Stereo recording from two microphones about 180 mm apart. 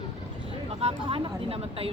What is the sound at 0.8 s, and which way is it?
Speech, 30° right (ahead or behind).